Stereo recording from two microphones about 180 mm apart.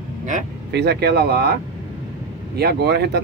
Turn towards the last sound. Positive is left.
turn(degrees=-65)  # may be behind; listen again after turning